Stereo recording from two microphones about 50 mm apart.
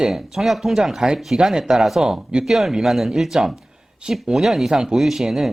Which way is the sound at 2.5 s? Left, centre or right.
Centre.